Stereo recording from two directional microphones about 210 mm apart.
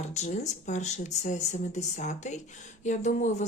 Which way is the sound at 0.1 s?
35° left (ahead or behind).